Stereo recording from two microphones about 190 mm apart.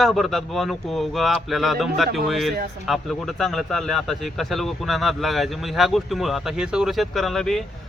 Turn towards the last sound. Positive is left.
turn(degrees=0)  # may be behind; listen again after turning